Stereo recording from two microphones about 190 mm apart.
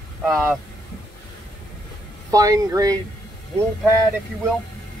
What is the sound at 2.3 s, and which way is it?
Speech, 20° right (ahead or behind).